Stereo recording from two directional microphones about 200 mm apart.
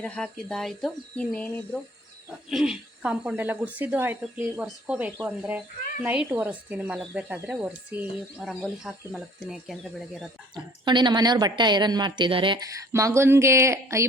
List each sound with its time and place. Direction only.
0.0 s speech: 5° left (ahead or behind)
2.5 s speech: centre (ahead or behind)
10.5 s a woman's voice: 20° right (ahead or behind)